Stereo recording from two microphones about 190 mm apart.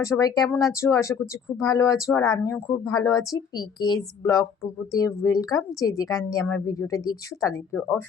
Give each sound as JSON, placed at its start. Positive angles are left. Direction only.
{"t": 0.0, "sound": "speech", "side_deg": 20}